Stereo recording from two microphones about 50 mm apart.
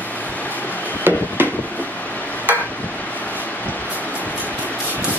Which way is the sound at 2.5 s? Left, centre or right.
Right.